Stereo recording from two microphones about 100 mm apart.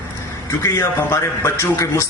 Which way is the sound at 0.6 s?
30° left (ahead or behind).